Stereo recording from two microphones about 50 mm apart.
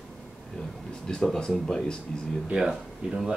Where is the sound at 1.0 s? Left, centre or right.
Centre.